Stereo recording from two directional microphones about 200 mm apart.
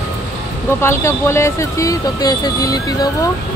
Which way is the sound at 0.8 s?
15° left (ahead or behind).